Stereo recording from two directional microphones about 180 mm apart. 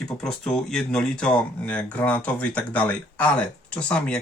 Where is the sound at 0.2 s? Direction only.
5° left (ahead or behind).